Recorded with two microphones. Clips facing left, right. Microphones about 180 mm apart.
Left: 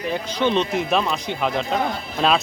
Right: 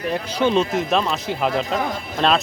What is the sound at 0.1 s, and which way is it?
Speech, 5° right (ahead or behind).